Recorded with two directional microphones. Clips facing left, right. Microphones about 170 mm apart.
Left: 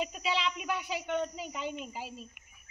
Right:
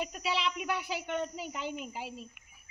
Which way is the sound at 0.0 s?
5° right (ahead or behind).